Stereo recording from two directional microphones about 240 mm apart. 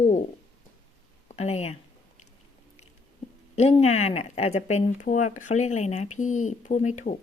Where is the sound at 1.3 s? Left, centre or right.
Left.